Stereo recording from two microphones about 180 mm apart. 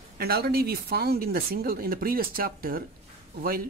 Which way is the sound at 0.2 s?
60° right (ahead or behind).